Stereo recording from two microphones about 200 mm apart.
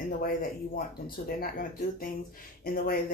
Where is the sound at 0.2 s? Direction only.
45° left (ahead or behind).